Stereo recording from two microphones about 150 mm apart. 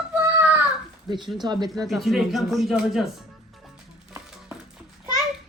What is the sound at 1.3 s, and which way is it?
Speech, 30° right (ahead or behind).